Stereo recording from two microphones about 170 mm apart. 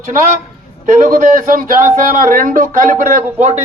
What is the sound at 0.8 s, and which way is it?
Speech, 50° right (ahead or behind).